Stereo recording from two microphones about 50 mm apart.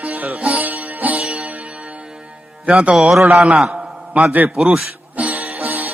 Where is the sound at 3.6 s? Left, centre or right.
Centre; by 4.5 s right.